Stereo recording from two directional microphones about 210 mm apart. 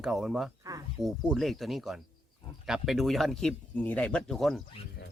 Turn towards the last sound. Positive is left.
turn(degrees=0)  # may be behind; listen again after turning